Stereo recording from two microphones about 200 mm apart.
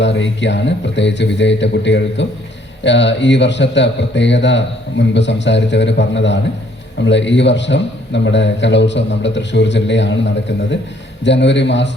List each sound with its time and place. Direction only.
0.0 s a man's voice: 65° left (ahead or behind)